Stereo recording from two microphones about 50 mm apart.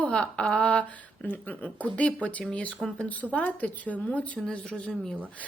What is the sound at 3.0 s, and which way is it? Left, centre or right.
Speech, left.